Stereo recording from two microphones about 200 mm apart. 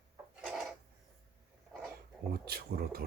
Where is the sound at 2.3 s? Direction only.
50° right (ahead or behind).